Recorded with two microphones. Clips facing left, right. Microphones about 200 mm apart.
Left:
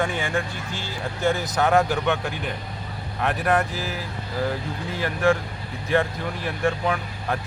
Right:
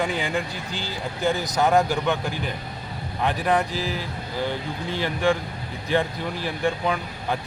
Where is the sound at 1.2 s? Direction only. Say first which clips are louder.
Even; centre (ahead or behind).